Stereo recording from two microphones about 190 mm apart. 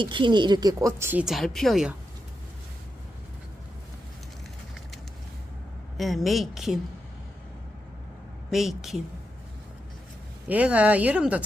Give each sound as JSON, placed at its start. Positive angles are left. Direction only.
{"t": 0.0, "sound": "speech", "side_deg": -25}
{"t": 6.0, "sound": "a woman's voice", "side_deg": 0}
{"t": 8.4, "sound": "a woman's voice", "side_deg": 0}
{"t": 10.5, "sound": "speech", "side_deg": -5}